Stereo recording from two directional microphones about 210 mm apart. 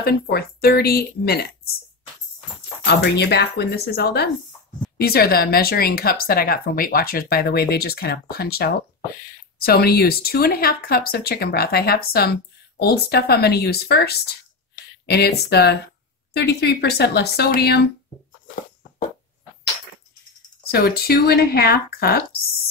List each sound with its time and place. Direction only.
0.0 s speech: 45° left (ahead or behind)
2.8 s speech: 55° left (ahead or behind)
20.7 s speech: 50° left (ahead or behind)